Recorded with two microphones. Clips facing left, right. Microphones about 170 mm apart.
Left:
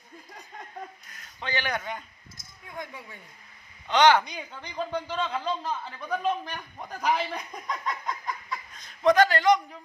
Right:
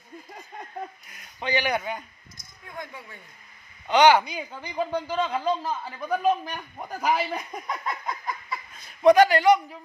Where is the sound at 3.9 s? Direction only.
10° right (ahead or behind).